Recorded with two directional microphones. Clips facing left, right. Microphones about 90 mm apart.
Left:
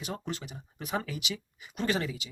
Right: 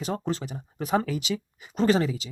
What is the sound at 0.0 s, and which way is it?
Speech, 30° right (ahead or behind).